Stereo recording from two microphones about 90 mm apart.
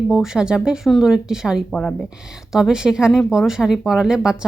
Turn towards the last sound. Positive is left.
turn(degrees=-5)  # may be behind; listen again after turning